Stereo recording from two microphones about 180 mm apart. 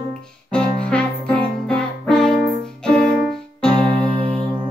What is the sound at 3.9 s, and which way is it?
Music, 30° right (ahead or behind).